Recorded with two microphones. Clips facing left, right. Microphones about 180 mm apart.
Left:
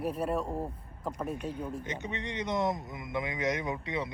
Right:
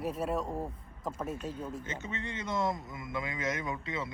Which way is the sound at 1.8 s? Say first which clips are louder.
Left 2 dB; 15° left (ahead or behind).